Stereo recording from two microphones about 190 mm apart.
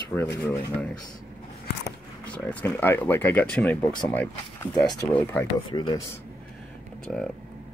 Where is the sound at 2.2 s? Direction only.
10° left (ahead or behind).